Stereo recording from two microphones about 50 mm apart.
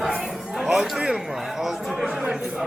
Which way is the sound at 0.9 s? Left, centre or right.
Centre.